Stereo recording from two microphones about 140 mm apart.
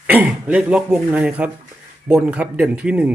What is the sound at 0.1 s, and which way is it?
Speech, 10° right (ahead or behind).